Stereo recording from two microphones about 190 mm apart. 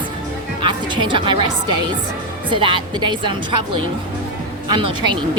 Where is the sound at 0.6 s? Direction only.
25° right (ahead or behind).